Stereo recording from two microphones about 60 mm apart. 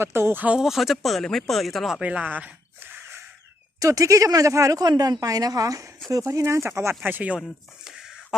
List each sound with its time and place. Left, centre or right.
0.0 s speech: right
0.6 s speech: centre
2.0 s speech: right
2.8 s snort: right
3.8 s speech: right
6.3 s speech: right
7.0 s speech: right
7.9 s a sound: centre